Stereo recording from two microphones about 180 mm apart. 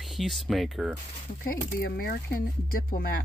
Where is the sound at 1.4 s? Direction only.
55° left (ahead or behind).